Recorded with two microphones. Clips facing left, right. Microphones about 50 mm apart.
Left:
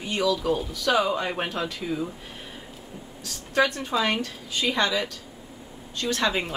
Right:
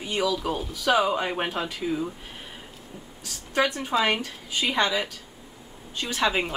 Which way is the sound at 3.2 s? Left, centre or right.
Centre.